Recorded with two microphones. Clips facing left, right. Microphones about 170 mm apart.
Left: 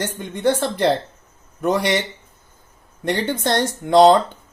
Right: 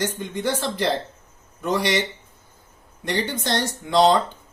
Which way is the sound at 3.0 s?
55° left (ahead or behind).